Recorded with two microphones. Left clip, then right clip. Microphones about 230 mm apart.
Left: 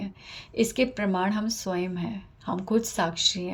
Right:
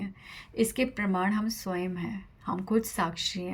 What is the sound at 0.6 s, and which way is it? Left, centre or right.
Speech, right.